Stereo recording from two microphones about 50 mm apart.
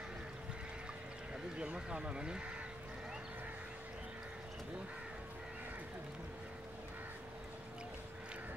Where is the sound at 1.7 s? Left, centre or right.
Centre.